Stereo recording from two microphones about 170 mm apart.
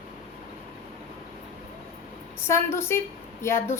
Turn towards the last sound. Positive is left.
turn(degrees=15)  # may be behind; listen again after turning